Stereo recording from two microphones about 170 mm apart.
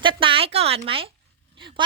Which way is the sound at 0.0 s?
30° right (ahead or behind).